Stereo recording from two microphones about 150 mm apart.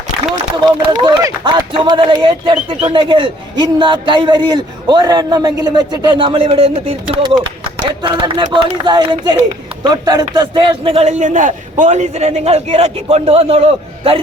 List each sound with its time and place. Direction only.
1.0 s speech: 25° right (ahead or behind)
11.2 s a man's voice: 55° right (ahead or behind); by 14.2 s 40° right (ahead or behind)